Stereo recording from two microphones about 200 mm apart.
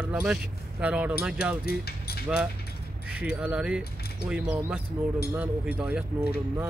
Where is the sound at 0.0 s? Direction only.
5° right (ahead or behind).